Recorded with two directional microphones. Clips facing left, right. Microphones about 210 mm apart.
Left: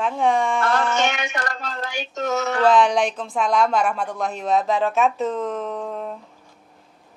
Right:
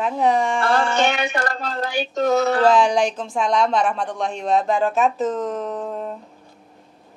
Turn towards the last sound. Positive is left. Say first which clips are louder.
# right 1 dB
turn(degrees=0)  # may be behind; listen again after turning